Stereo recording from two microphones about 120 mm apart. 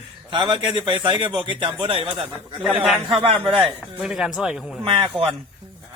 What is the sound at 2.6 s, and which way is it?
A man's voice, 10° right (ahead or behind).